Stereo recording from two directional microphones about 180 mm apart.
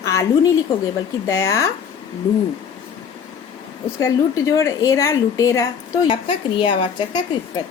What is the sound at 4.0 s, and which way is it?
A woman's voice, 15° left (ahead or behind).